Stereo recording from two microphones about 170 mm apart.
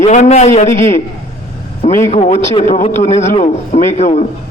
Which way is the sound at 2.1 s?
40° left (ahead or behind).